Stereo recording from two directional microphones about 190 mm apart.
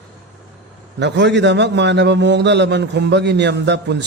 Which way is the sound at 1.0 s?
65° right (ahead or behind).